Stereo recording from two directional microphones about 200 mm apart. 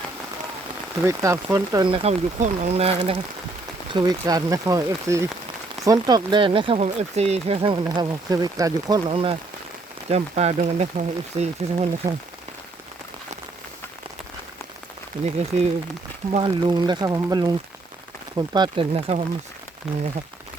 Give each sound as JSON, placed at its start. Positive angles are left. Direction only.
{"t": 1.0, "sound": "speech", "side_deg": -15}
{"t": 3.9, "sound": "speech", "side_deg": -20}
{"t": 15.2, "sound": "speech", "side_deg": -35}
{"t": 16.4, "sound": "speech", "side_deg": -20}